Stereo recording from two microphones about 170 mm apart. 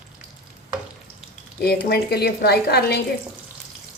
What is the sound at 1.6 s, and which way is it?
A woman's voice, 70° left (ahead or behind).